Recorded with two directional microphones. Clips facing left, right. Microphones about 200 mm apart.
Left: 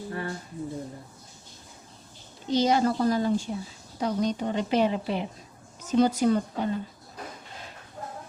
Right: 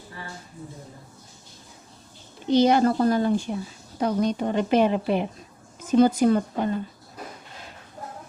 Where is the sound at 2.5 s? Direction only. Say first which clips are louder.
Right 5 dB; 60° right (ahead or behind).